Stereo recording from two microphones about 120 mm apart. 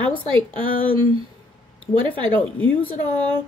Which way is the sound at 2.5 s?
15° left (ahead or behind).